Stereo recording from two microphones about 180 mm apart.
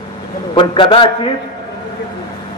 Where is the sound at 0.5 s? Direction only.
30° left (ahead or behind).